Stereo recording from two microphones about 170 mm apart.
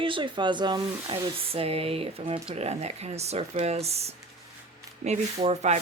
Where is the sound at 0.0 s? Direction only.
30° right (ahead or behind).